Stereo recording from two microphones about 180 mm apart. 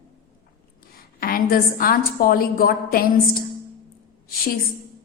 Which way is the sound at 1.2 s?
55° left (ahead or behind).